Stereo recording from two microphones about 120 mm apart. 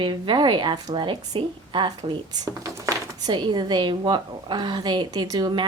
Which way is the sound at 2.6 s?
30° right (ahead or behind).